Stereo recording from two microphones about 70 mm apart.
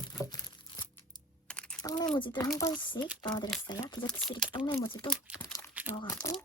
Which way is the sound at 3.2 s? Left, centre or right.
Left.